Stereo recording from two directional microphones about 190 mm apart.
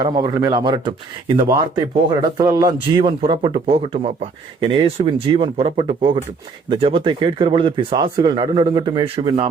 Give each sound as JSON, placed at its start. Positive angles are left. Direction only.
{"t": 0.0, "sound": "speech", "side_deg": -20}